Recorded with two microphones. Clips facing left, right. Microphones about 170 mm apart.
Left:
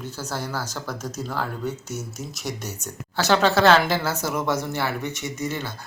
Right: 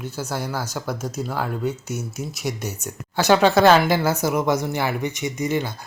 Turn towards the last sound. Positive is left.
turn(degrees=-15)  # may be behind; listen again after turning